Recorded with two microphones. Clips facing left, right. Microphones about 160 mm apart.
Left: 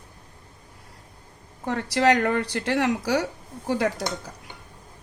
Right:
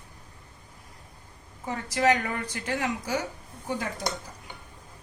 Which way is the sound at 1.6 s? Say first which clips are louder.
Left 4 dB; 70° left (ahead or behind).